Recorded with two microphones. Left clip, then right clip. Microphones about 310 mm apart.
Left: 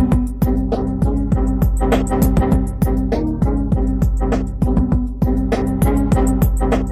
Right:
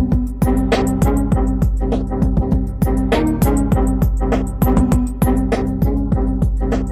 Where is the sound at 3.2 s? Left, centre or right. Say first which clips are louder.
Right 4 dB; right.